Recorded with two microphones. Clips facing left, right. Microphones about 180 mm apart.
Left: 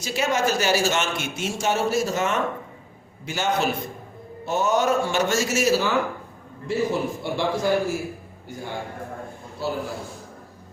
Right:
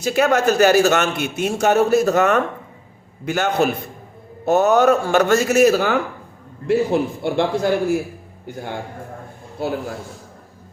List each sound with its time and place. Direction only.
0.0 s a man's voice: 55° right (ahead or behind)